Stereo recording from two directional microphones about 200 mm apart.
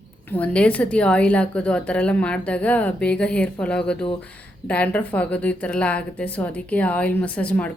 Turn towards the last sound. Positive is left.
turn(degrees=5)  # may be behind; listen again after turning